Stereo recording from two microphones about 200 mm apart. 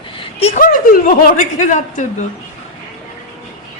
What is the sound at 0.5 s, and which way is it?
A woman's voice, 45° left (ahead or behind).